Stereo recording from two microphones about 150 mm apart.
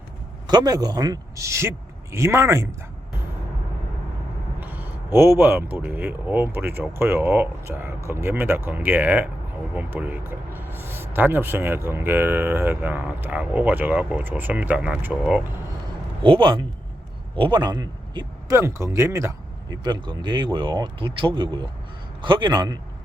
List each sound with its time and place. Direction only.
0.4 s speech: 25° right (ahead or behind)
4.6 s a man's voice: 10° right (ahead or behind)
16.2 s a man's voice: 35° right (ahead or behind)
18.5 s speech: 20° right (ahead or behind)
19.8 s speech: 30° right (ahead or behind)